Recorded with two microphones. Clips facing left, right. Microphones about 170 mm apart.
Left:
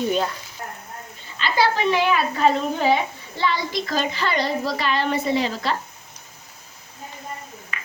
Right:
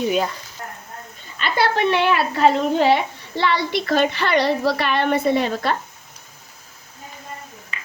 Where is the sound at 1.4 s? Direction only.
60° right (ahead or behind).